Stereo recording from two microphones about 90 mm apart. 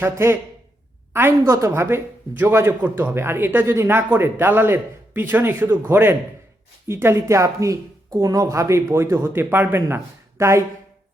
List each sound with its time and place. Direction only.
0.0 s speech: 25° right (ahead or behind)